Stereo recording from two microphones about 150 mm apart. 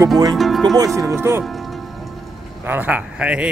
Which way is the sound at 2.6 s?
10° right (ahead or behind).